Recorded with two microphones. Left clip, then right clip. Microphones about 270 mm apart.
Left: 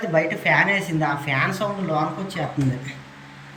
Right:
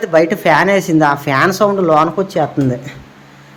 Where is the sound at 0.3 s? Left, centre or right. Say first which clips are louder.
Right 8 dB; centre.